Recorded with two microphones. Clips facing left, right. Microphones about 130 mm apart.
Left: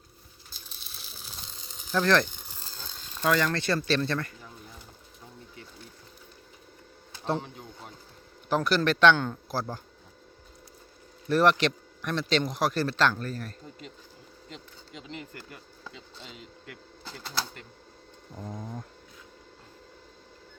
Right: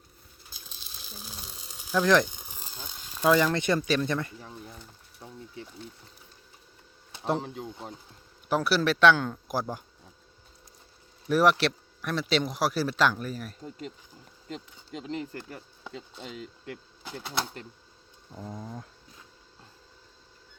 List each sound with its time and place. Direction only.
1.2 s a sound: 10° right (ahead or behind)
7.5 s a man's voice: 25° right (ahead or behind)
8.4 s a man's voice: 5° right (ahead or behind)
11.3 s speech: 10° right (ahead or behind)
14.5 s speech: 40° right (ahead or behind)
17.0 s speech: 15° right (ahead or behind)
18.3 s a man's voice: 5° right (ahead or behind)